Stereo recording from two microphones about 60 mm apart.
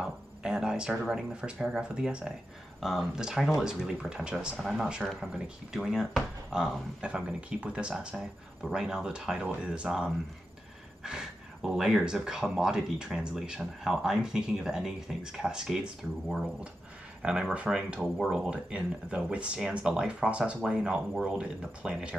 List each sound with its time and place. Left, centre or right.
0.0 s a sound: centre
1.0 s speech: centre
18.5 s speech: centre